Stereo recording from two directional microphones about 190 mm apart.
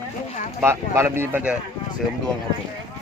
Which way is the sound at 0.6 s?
15° right (ahead or behind).